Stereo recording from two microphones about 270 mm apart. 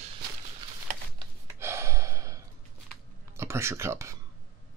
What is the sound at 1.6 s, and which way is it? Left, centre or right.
Gasp, centre.